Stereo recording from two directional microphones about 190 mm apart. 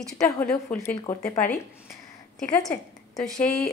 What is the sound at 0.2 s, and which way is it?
A woman's voice, 5° left (ahead or behind).